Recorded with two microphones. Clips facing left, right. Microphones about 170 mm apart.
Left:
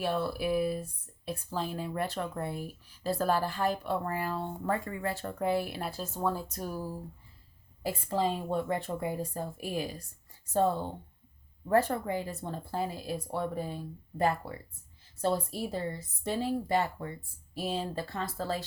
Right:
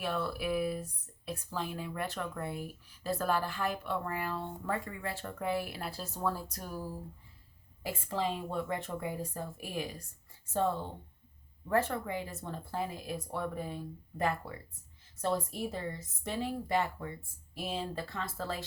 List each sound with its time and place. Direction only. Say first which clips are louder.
0.0 s speech: left 4 dB; 30° left (ahead or behind)
7.9 s speech: left 4 dB; 35° left (ahead or behind)